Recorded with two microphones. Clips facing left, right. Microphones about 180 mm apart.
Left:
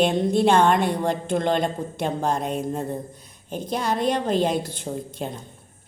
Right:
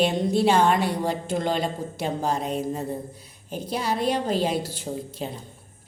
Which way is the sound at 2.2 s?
5° right (ahead or behind).